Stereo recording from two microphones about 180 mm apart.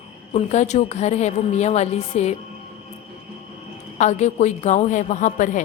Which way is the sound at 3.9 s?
40° left (ahead or behind).